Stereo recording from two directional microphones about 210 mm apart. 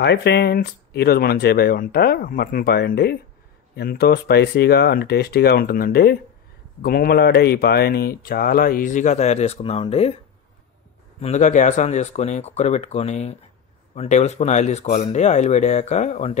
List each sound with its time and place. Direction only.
0.0 s speech: 55° left (ahead or behind); by 10.1 s 30° left (ahead or behind)
11.1 s speech: 30° left (ahead or behind)